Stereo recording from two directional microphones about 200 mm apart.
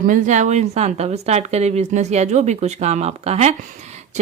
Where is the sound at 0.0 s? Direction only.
40° right (ahead or behind).